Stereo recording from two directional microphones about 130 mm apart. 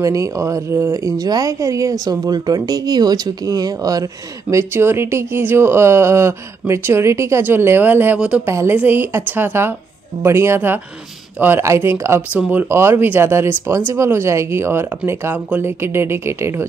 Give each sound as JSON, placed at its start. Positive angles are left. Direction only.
{"t": 0.0, "sound": "speech", "side_deg": -25}